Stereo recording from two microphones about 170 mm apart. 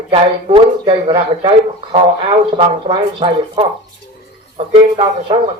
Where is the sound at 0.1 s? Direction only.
35° right (ahead or behind).